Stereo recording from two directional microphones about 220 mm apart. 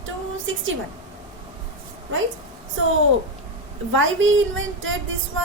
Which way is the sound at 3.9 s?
60° right (ahead or behind).